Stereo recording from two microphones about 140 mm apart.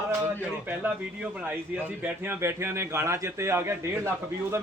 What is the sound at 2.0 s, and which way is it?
A man's voice, 15° right (ahead or behind).